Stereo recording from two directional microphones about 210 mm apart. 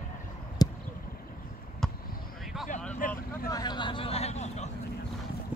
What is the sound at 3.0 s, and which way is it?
Vehicle, 40° left (ahead or behind).